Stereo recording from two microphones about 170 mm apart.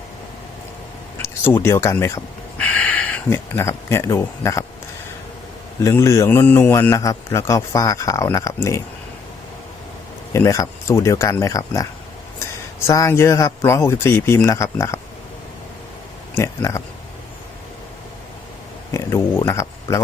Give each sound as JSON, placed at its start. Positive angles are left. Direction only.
{"t": 1.6, "sound": "speech", "side_deg": 15}
{"t": 5.8, "sound": "a man's voice", "side_deg": 15}
{"t": 10.3, "sound": "a man's voice", "side_deg": 20}
{"t": 12.9, "sound": "a man's voice", "side_deg": 15}
{"t": 16.3, "sound": "a man's voice", "side_deg": 15}
{"t": 18.9, "sound": "a sound", "side_deg": 15}